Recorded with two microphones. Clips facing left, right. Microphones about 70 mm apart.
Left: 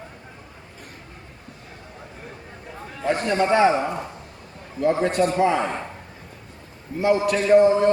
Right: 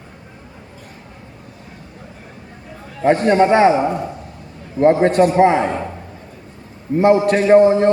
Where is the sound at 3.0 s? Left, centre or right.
Right.